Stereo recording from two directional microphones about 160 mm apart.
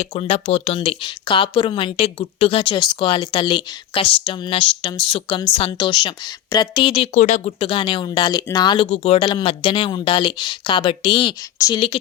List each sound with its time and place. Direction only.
0.0 s speech: 40° left (ahead or behind)